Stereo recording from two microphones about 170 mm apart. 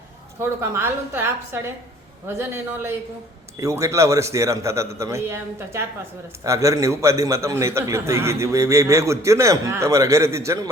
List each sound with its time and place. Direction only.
0.6 s a man's voice: 15° right (ahead or behind)